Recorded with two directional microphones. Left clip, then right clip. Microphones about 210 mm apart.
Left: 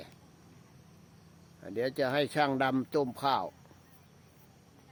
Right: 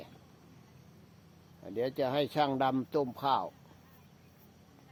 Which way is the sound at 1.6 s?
15° left (ahead or behind).